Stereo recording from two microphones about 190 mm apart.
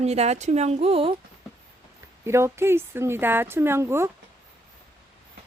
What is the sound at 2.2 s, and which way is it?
Speech, 15° right (ahead or behind).